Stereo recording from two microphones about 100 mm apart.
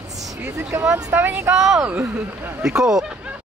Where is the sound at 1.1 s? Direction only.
20° right (ahead or behind).